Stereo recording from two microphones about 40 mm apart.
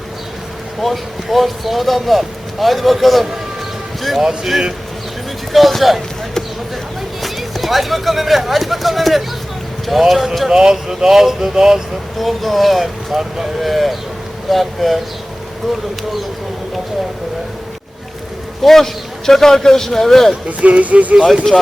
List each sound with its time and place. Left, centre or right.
0.8 s speech: centre
7.2 s speech: centre
10.5 s speech: centre
12.2 s speech: centre
18.6 s a man's voice: centre
20.6 s speech: right